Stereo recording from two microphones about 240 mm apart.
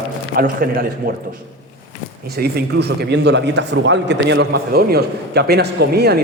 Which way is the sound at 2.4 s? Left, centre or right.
Right.